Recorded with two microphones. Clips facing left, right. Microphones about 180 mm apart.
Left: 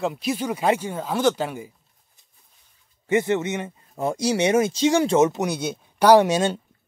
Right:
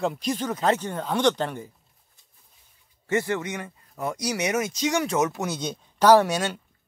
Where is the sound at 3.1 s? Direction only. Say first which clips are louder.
Left 4 dB; 20° left (ahead or behind).